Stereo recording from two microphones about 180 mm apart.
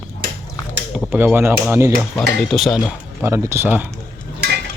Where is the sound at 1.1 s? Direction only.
10° right (ahead or behind).